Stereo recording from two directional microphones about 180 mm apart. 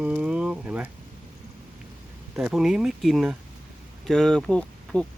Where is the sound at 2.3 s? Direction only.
5° right (ahead or behind).